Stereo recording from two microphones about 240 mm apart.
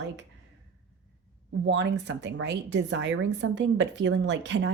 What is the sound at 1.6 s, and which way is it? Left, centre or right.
Speech, right.